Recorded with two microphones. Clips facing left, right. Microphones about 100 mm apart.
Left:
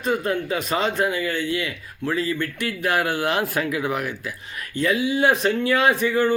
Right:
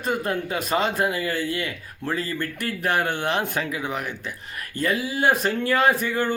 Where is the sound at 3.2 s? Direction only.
5° left (ahead or behind).